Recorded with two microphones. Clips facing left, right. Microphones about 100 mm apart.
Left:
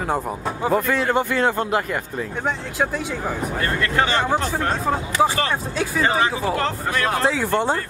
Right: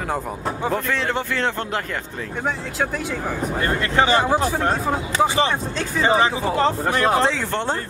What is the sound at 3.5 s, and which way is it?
Speech, 20° right (ahead or behind).